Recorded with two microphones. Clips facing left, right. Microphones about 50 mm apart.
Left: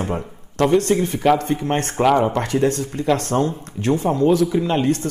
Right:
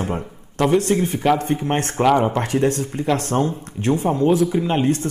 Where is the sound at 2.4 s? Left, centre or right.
Right.